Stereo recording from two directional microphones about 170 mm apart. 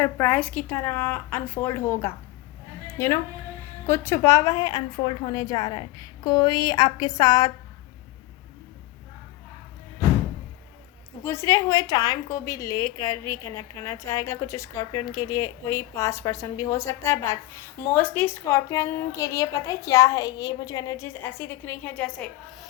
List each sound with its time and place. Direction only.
0.0 s a woman's voice: 10° left (ahead or behind)
3.8 s a woman's voice: 15° left (ahead or behind)
11.2 s a woman's voice: 15° left (ahead or behind)